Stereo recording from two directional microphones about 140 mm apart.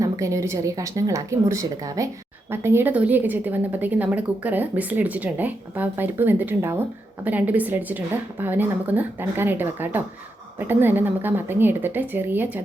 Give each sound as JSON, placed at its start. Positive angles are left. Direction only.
{"t": 0.0, "sound": "a woman's voice", "side_deg": -20}